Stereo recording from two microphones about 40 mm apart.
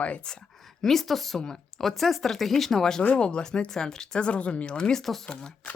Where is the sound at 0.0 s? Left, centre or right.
Left.